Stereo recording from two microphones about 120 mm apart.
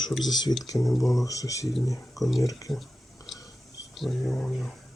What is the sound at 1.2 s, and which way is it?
Speech, 25° left (ahead or behind).